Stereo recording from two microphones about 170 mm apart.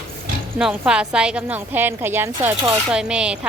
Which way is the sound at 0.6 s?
5° right (ahead or behind).